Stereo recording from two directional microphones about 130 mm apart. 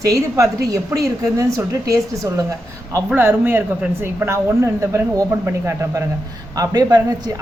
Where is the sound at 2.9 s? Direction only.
15° right (ahead or behind).